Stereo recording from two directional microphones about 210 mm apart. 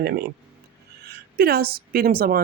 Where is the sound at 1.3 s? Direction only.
45° right (ahead or behind).